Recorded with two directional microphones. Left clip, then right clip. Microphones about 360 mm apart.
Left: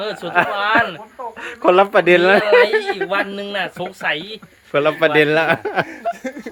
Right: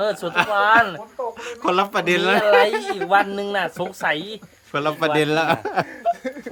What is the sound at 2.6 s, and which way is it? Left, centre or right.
Speech, right.